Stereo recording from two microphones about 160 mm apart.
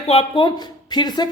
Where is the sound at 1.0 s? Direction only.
25° left (ahead or behind).